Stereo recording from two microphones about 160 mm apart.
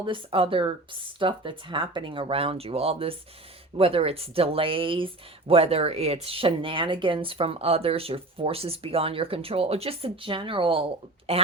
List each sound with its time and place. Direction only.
0.0 s speech: 35° right (ahead or behind)